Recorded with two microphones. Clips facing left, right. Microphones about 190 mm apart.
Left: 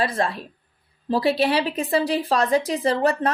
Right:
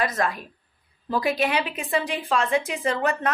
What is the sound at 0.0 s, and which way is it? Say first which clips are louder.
A woman's voice: left 2 dB; 30° left (ahead or behind).